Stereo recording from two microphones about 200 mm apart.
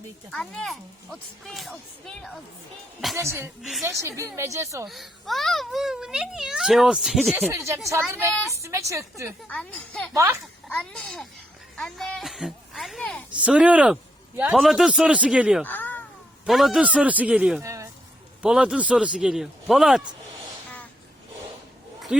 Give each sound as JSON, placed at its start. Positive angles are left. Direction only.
{"t": 0.3, "sound": "a child's voice", "side_deg": 5}
{"t": 3.2, "sound": "a woman's voice", "side_deg": -10}
{"t": 3.6, "sound": "a child's voice", "side_deg": 0}
{"t": 4.0, "sound": "a woman's voice", "side_deg": -15}
{"t": 4.9, "sound": "a child's voice", "side_deg": 0}
{"t": 7.3, "sound": "a woman's voice", "side_deg": -15}
{"t": 9.5, "sound": "a child's voice", "side_deg": 5}
{"t": 15.6, "sound": "cat", "side_deg": 10}
{"t": 16.5, "sound": "a child's voice", "side_deg": 0}
{"t": 17.6, "sound": "speech", "side_deg": -15}
{"t": 18.4, "sound": "a child's voice", "side_deg": -5}
{"t": 22.1, "sound": "a sound", "side_deg": -5}